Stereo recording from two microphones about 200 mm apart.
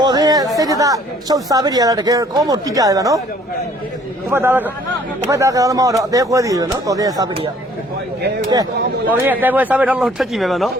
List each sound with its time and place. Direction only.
0.0 s chatter: 20° right (ahead or behind)
0.5 s speech: 15° right (ahead or behind)
4.3 s speech: 10° right (ahead or behind)
9.0 s speech: 10° right (ahead or behind)